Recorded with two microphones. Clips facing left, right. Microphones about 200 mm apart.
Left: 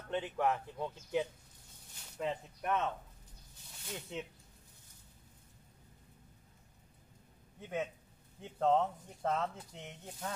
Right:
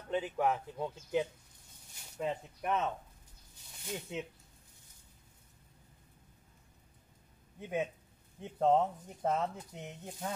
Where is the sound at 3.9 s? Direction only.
10° right (ahead or behind).